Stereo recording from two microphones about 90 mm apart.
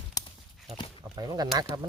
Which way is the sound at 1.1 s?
45° right (ahead or behind).